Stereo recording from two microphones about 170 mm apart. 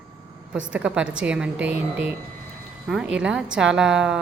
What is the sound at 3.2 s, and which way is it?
Speech, 5° right (ahead or behind).